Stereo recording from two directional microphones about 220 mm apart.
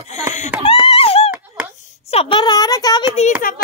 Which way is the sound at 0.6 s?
25° left (ahead or behind).